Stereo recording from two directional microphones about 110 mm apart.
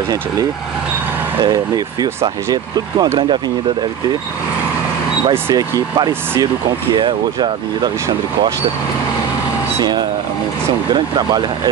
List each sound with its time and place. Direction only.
1.4 s speech: 40° right (ahead or behind)
5.5 s speech: 35° right (ahead or behind)
7.0 s speech: 50° right (ahead or behind)
9.8 s speech: 40° right (ahead or behind)